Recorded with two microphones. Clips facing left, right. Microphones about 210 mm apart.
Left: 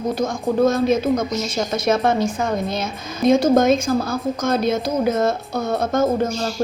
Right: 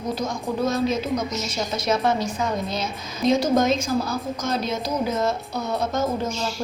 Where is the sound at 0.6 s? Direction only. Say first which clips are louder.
Left 6 dB; 50° left (ahead or behind).